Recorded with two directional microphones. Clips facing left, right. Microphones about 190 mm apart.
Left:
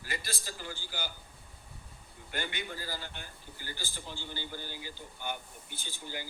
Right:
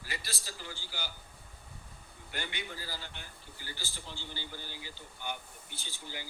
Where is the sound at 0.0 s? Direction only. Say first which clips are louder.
Left 3 dB; 50° left (ahead or behind).